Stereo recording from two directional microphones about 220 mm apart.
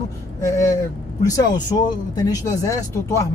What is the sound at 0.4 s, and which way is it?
Speech, 15° left (ahead or behind).